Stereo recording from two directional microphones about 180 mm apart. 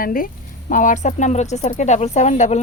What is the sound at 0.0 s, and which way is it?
Speech, 50° left (ahead or behind).